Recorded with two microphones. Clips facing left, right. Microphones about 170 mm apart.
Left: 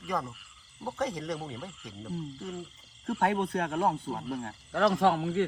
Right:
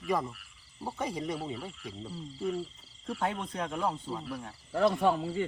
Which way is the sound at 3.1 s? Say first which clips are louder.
Left 5 dB; 60° left (ahead or behind).